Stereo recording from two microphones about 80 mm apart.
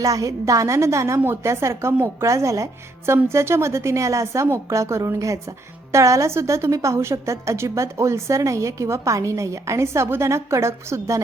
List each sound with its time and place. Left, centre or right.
0.0 s a woman's voice: right